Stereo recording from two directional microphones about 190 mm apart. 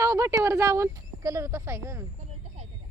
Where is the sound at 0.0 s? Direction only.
15° right (ahead or behind).